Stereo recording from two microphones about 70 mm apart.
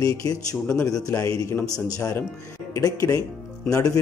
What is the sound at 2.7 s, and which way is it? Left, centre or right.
Speech, left.